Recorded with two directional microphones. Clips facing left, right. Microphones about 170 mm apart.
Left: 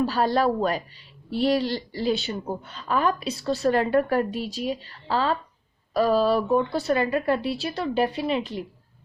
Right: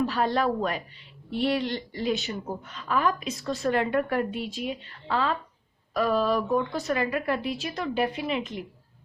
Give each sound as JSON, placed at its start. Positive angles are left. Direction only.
{"t": 0.0, "sound": "a woman's voice", "side_deg": 35}